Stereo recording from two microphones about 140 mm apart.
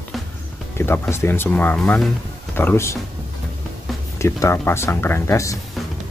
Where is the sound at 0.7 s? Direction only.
15° left (ahead or behind).